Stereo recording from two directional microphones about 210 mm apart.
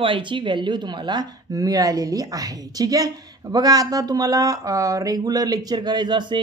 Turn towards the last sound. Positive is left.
turn(degrees=-20)  # may be behind; listen again after turning